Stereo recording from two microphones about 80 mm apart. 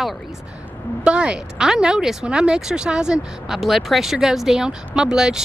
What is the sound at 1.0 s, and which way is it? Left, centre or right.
Speech, centre.